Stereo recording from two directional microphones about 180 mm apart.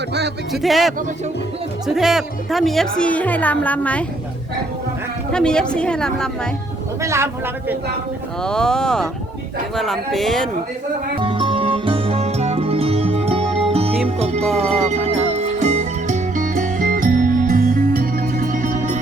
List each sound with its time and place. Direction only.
0.1 s speech: 70° right (ahead or behind)
0.6 s speech: centre (ahead or behind)
5.3 s speech: 5° left (ahead or behind)
7.0 s speech: 15° right (ahead or behind)
8.4 s speech: 5° left (ahead or behind)
11.2 s music: 30° right (ahead or behind)
14.4 s speech: centre (ahead or behind)
14.8 s music: 40° right (ahead or behind)